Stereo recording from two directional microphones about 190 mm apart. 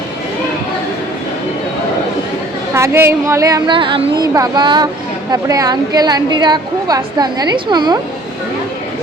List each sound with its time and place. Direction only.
2.7 s a woman's voice: 15° right (ahead or behind)